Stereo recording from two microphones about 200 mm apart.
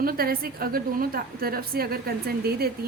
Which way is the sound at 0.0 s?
50° right (ahead or behind).